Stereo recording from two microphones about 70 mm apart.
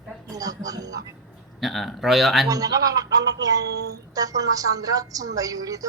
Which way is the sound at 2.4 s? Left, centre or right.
Right.